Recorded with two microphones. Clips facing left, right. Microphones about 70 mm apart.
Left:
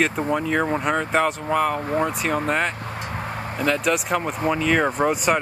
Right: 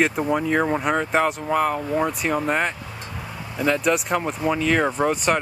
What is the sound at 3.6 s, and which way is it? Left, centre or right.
Speech, centre.